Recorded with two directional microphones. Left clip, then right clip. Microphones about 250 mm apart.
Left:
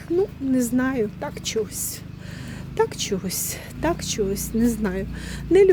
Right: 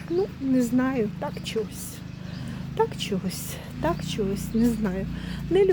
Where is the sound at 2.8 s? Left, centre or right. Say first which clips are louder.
Left 3 dB; centre.